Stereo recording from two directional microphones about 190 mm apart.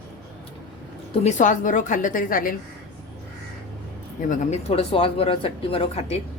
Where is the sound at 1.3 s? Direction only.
40° left (ahead or behind).